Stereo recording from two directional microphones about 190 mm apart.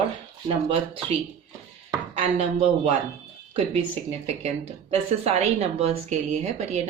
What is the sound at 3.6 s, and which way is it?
A woman's voice, 30° right (ahead or behind).